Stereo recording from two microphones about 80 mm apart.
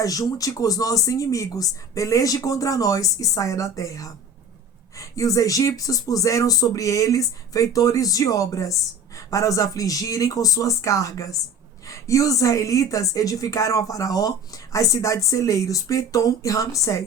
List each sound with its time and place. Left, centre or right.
0.0 s a woman's voice: left